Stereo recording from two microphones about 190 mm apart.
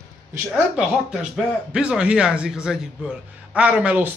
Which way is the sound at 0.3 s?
10° right (ahead or behind).